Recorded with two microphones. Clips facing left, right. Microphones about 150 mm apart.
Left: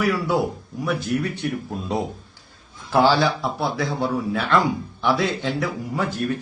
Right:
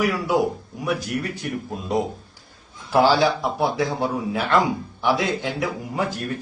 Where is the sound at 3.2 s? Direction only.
15° right (ahead or behind).